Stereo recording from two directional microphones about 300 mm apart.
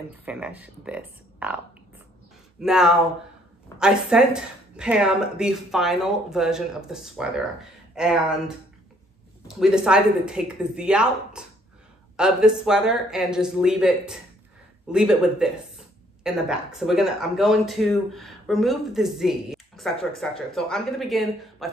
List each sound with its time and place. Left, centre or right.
0.1 s speech: centre
2.6 s speech: centre
9.5 s speech: centre